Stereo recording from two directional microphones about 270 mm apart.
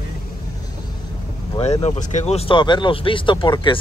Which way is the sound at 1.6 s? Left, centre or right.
Left.